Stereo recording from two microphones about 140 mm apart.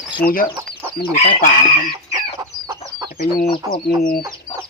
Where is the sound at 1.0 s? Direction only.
45° left (ahead or behind).